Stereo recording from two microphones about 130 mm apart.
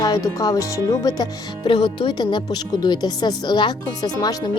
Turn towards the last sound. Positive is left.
turn(degrees=30)  # may be behind; listen again after turning